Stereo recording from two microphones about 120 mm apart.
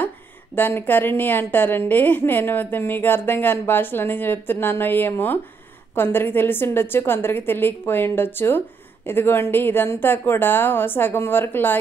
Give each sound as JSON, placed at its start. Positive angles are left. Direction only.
{"t": 0.6, "sound": "a woman's voice", "side_deg": 15}